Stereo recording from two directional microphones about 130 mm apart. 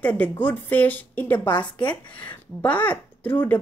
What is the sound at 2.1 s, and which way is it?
Speech, 10° left (ahead or behind).